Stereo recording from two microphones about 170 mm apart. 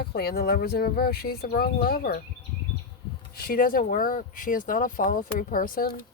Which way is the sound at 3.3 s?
60° left (ahead or behind).